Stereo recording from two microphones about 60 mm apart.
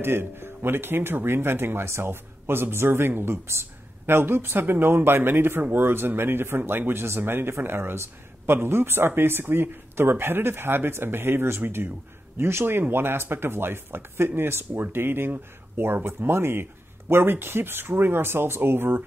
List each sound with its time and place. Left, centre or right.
0.0 s speech: right